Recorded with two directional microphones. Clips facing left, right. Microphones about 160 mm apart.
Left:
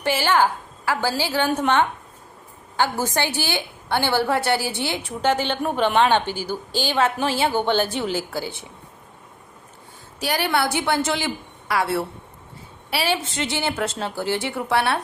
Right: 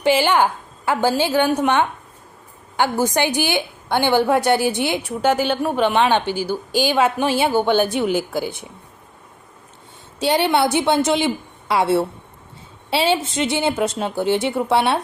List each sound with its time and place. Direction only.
0.0 s a woman's voice: 15° right (ahead or behind)
10.2 s a woman's voice: 25° right (ahead or behind)